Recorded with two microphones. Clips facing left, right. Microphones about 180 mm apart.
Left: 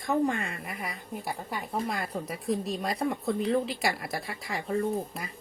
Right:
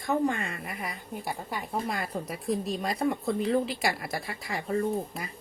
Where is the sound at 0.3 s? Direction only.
Centre (ahead or behind).